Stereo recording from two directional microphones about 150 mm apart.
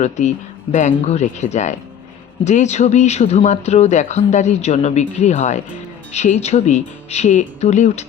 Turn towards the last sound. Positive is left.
turn(degrees=50)  # may be behind; listen again after turning